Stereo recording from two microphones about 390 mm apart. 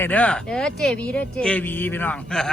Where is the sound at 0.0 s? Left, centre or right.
Centre.